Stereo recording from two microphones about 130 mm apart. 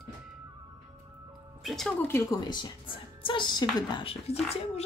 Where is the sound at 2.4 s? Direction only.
35° left (ahead or behind).